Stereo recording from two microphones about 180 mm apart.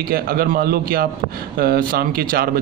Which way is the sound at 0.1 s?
55° right (ahead or behind).